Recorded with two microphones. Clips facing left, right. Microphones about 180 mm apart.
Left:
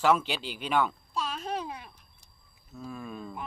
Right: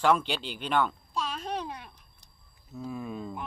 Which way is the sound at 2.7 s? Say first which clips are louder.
Right 3 dB; 15° right (ahead or behind).